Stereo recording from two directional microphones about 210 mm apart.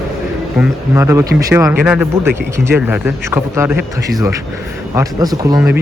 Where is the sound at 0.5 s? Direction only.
15° right (ahead or behind).